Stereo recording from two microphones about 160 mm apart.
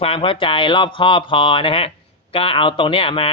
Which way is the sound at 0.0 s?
35° left (ahead or behind).